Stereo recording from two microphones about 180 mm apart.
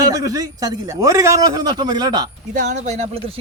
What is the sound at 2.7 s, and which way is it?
Speech, 40° right (ahead or behind).